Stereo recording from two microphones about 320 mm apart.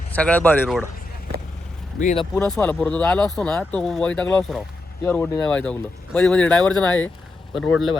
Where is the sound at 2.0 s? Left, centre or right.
Left.